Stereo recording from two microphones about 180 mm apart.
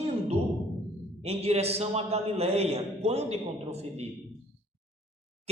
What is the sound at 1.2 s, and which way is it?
A man's voice, 35° right (ahead or behind).